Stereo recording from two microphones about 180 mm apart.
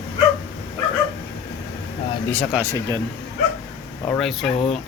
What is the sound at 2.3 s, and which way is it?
Speech, 5° left (ahead or behind).